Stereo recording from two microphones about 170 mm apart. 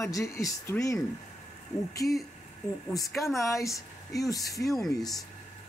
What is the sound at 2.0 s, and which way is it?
Speech, centre (ahead or behind).